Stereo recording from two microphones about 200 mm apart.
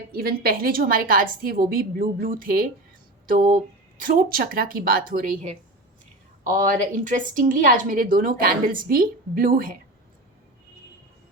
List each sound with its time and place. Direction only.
0.1 s a woman's voice: 50° right (ahead or behind)
4.0 s a woman's voice: 45° right (ahead or behind)